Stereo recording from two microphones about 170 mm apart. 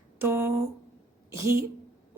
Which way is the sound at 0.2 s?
15° right (ahead or behind).